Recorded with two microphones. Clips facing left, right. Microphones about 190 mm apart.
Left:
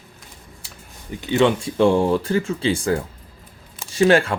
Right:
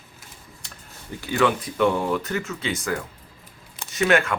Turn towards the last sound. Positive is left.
turn(degrees=30)  # may be behind; listen again after turning